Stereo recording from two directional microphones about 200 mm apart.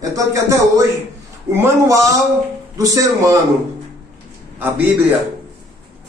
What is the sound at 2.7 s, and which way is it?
Speech, 15° right (ahead or behind).